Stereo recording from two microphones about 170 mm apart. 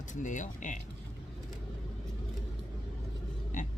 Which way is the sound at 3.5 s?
45° left (ahead or behind).